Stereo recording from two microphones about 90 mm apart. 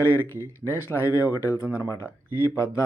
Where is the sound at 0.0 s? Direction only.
25° left (ahead or behind).